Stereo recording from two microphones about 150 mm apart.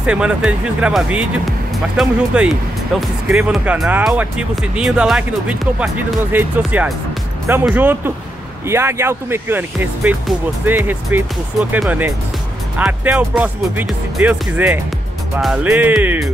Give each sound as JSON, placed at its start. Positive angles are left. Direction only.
{"t": 0.0, "sound": "speech", "side_deg": -5}
{"t": 12.7, "sound": "speech", "side_deg": -10}